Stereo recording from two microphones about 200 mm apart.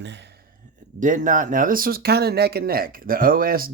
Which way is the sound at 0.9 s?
40° right (ahead or behind).